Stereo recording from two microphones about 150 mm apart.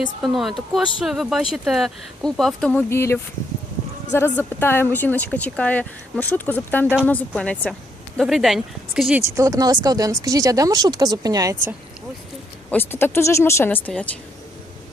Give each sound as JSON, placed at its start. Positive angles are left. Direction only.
{"t": 0.2, "sound": "speech", "side_deg": 0}
{"t": 9.3, "sound": "speech", "side_deg": -20}
{"t": 12.7, "sound": "speech", "side_deg": 15}